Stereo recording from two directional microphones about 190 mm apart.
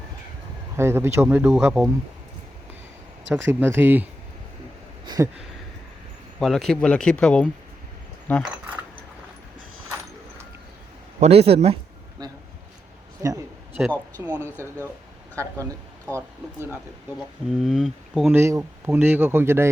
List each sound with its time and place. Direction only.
0.8 s speech: 15° right (ahead or behind)
3.3 s speech: 10° right (ahead or behind)
5.0 s a sound: 20° right (ahead or behind)
6.4 s speech: centre (ahead or behind)
11.2 s speech: 30° right (ahead or behind)
12.2 s a sound: 20° right (ahead or behind)
14.2 s speech: 20° right (ahead or behind)
17.6 s speech: centre (ahead or behind)
18.3 s speech: 15° right (ahead or behind)